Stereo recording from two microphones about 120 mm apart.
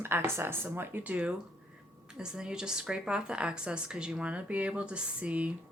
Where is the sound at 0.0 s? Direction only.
20° right (ahead or behind).